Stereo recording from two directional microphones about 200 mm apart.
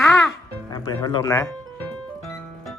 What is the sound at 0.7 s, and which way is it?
Speech, 20° left (ahead or behind).